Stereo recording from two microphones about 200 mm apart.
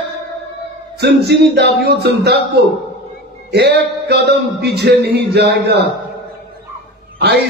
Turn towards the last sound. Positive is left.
turn(degrees=-55)  # may be behind; listen again after turning